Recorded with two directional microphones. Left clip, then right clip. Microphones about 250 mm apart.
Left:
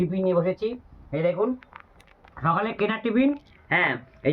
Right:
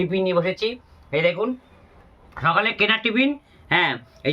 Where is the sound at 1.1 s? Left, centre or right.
Right.